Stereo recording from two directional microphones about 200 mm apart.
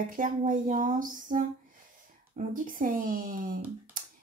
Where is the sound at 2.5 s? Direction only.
45° right (ahead or behind).